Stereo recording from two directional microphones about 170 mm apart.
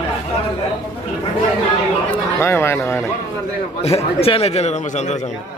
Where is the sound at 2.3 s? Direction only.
15° left (ahead or behind).